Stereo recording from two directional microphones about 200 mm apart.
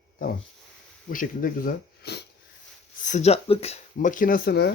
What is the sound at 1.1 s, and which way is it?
Speech, 45° left (ahead or behind).